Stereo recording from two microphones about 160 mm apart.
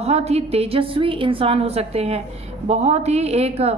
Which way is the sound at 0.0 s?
40° right (ahead or behind).